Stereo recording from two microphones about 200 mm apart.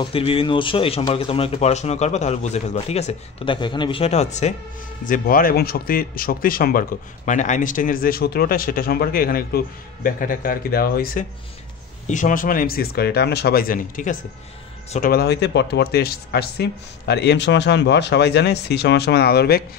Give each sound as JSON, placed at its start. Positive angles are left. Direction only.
{"t": 0.0, "sound": "speech", "side_deg": 25}